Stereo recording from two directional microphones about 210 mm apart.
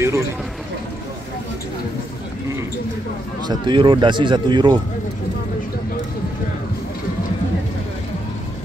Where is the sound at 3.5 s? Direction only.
25° right (ahead or behind).